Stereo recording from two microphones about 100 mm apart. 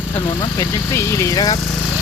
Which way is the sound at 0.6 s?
30° left (ahead or behind).